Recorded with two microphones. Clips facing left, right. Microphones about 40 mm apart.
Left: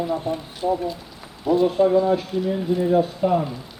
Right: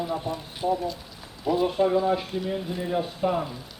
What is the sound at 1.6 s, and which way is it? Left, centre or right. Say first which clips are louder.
A man's voice: left 5 dB; centre.